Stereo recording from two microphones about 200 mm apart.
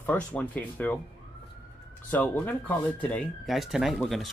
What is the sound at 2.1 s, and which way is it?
Speech, 10° left (ahead or behind).